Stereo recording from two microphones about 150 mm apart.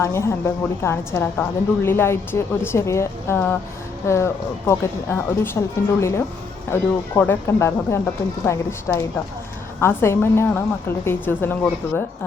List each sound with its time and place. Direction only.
0.0 s a woman's voice: 20° left (ahead or behind)